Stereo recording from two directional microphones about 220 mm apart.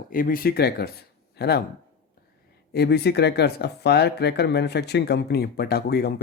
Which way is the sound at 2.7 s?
50° left (ahead or behind).